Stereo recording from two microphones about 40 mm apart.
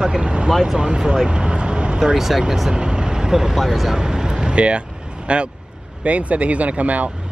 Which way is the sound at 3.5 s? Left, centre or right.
Centre.